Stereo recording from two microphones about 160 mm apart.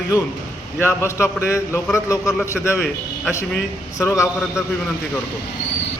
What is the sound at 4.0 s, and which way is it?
Speech, 20° left (ahead or behind).